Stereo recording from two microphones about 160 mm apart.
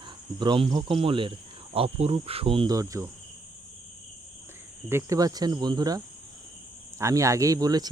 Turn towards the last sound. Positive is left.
turn(degrees=-25)  # may be behind; listen again after turning